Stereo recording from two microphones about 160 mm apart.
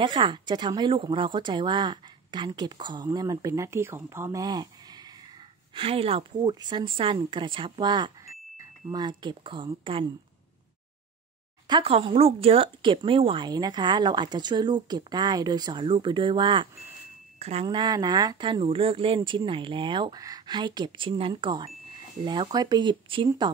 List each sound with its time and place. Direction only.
0.0 s speech: 30° right (ahead or behind)
5.8 s speech: 35° right (ahead or behind)
11.6 s speech: 30° right (ahead or behind)